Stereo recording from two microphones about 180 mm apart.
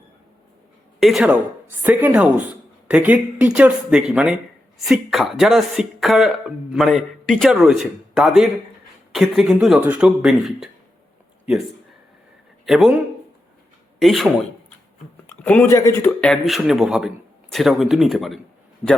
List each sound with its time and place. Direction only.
0.9 s a woman's voice: centre (ahead or behind)
12.6 s a man's voice: centre (ahead or behind)
14.0 s a man's voice: centre (ahead or behind)
15.4 s a man's voice: 10° left (ahead or behind)